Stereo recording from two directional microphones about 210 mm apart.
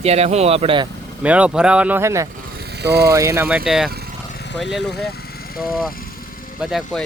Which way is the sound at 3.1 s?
15° right (ahead or behind).